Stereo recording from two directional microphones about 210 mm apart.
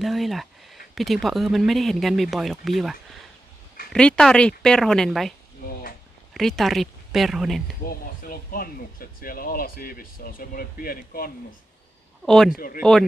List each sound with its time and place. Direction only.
0.0 s a sound: centre (ahead or behind)
0.9 s speech: centre (ahead or behind)
5.7 s a sound: 45° left (ahead or behind)
6.3 s speech: centre (ahead or behind)
7.9 s speech: 45° left (ahead or behind)
12.3 s speech: centre (ahead or behind)
12.5 s speech: 45° left (ahead or behind)